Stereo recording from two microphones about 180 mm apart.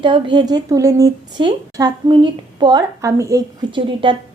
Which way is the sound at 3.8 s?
30° right (ahead or behind).